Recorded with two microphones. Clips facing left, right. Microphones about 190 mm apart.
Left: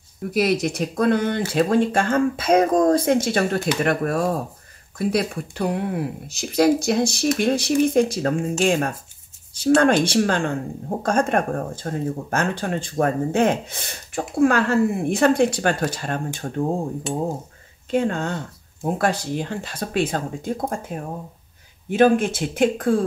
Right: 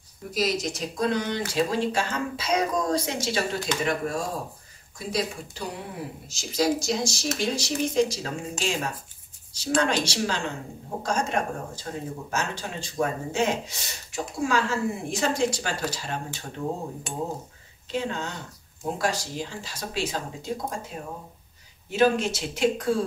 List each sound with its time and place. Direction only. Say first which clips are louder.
0.3 s speech: left 6 dB; 60° left (ahead or behind)
17.9 s speech: left 8 dB; 55° left (ahead or behind)